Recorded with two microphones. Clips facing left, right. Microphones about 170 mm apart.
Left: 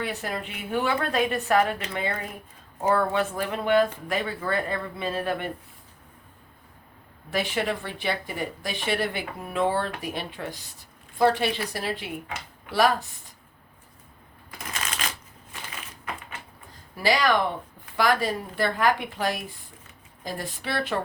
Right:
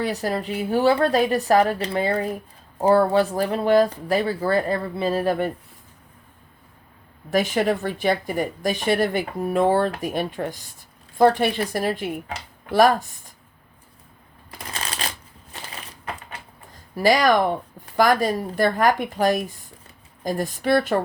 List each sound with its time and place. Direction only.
0.0 s speech: 35° right (ahead or behind)
7.3 s speech: 45° right (ahead or behind)
14.7 s shuffling cards: 35° right (ahead or behind)
16.9 s speech: 45° right (ahead or behind)